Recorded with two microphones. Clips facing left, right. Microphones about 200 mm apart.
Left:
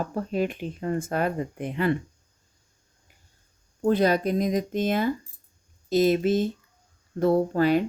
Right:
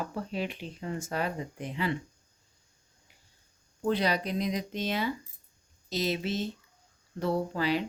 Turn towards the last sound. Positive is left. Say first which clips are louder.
# left 8 dB
turn(degrees=50)  # may be behind; listen again after turning